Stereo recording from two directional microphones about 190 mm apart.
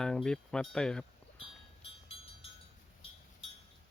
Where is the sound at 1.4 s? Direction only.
30° left (ahead or behind).